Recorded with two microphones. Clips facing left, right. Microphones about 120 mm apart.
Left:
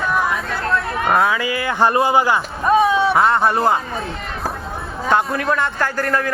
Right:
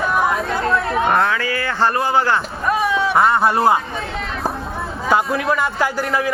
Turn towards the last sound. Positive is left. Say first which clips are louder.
# right 1 dB
turn(degrees=-10)  # may be behind; listen again after turning